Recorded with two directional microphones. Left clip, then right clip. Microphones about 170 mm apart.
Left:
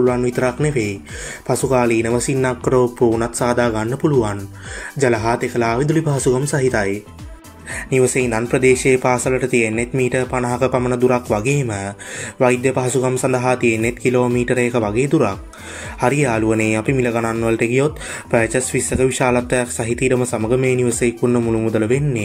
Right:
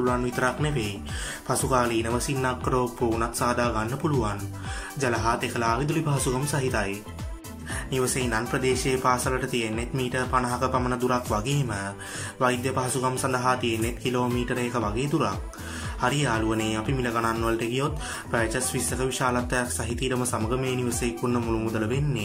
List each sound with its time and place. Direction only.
0.0 s speech: 25° left (ahead or behind)
7.9 s a man's voice: 30° left (ahead or behind)